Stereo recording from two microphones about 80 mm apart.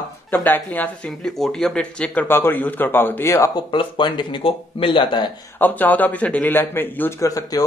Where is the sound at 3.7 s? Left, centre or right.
Left.